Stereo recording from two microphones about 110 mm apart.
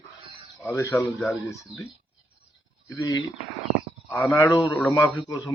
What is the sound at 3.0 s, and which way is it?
A man's voice, 30° left (ahead or behind).